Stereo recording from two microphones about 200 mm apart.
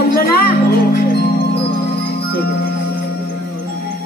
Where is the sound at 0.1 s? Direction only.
50° left (ahead or behind).